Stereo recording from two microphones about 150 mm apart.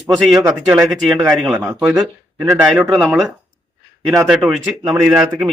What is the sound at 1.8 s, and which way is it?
Speech, 15° right (ahead or behind).